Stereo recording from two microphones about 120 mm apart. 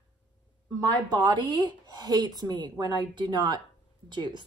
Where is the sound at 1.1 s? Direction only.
40° right (ahead or behind).